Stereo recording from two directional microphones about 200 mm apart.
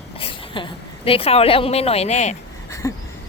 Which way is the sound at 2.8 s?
15° left (ahead or behind).